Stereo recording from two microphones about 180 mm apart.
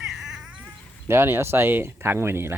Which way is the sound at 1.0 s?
15° right (ahead or behind).